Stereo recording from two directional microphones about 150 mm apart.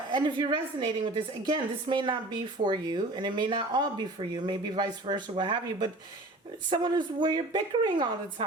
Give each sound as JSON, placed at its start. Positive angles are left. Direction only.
{"t": 0.1, "sound": "speech", "side_deg": -30}